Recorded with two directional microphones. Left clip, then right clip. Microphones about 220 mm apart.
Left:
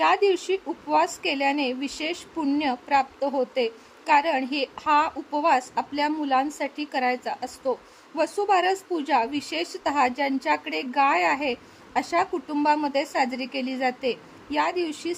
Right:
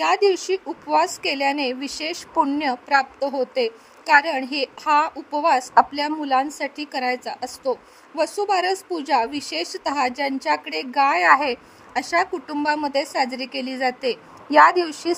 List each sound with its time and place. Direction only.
0.1 s a woman's voice: 20° right (ahead or behind)